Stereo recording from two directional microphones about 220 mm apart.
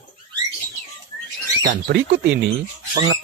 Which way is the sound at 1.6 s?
40° right (ahead or behind).